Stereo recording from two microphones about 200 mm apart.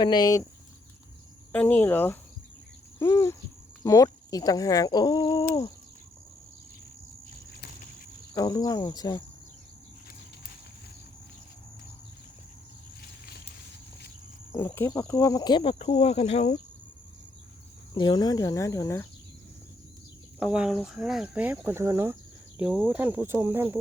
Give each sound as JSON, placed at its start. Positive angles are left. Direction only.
{"t": 0.0, "sound": "speech", "side_deg": 20}
{"t": 1.5, "sound": "speech", "side_deg": 10}
{"t": 8.3, "sound": "speech", "side_deg": 15}
{"t": 14.5, "sound": "speech", "side_deg": 10}
{"t": 17.9, "sound": "speech", "side_deg": 20}
{"t": 20.4, "sound": "speech", "side_deg": -5}